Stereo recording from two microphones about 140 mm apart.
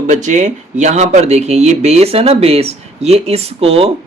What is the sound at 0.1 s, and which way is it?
Speech, 60° right (ahead or behind).